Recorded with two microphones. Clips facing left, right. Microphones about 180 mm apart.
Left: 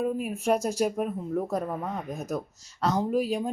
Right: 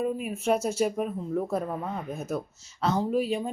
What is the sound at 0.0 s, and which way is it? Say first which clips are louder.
Speech: left 1 dB; centre (ahead or behind).